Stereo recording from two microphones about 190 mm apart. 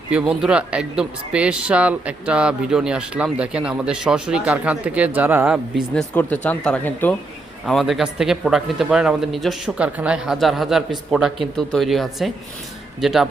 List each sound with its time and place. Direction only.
0.1 s speech: 5° right (ahead or behind)